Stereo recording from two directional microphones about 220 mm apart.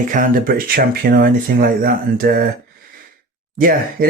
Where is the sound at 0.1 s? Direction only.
40° right (ahead or behind).